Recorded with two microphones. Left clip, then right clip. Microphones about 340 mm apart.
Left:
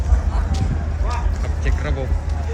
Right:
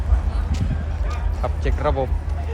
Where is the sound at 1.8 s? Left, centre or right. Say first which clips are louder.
Right 9 dB; centre.